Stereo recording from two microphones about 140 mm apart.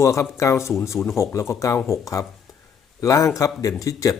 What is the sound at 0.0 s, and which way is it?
Speech, 20° left (ahead or behind).